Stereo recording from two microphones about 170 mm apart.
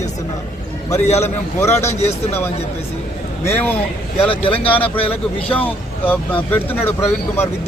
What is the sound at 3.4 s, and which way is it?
Speech, 15° left (ahead or behind).